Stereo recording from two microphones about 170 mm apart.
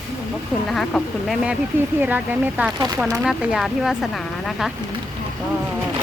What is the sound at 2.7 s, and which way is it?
Speech, 25° right (ahead or behind).